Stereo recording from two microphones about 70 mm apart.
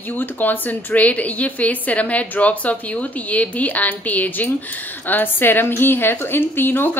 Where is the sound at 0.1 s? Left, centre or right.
Left.